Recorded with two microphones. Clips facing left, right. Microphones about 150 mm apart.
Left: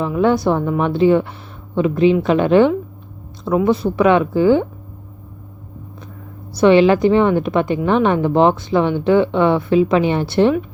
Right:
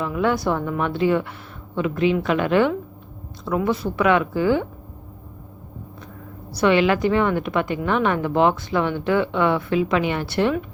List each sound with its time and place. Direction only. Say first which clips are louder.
0.0 s a woman's voice: left 6 dB; 25° left (ahead or behind)
6.6 s a woman's voice: left 6 dB; 30° left (ahead or behind)